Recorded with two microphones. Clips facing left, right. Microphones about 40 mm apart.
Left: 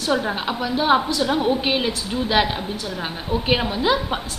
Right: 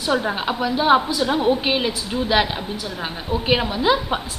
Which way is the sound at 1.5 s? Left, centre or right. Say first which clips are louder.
Right 1 dB; centre.